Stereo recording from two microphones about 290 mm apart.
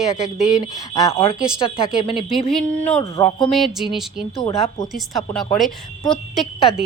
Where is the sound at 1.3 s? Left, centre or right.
Centre.